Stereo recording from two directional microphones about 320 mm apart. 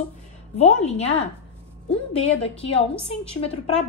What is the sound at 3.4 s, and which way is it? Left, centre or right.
Speech, left.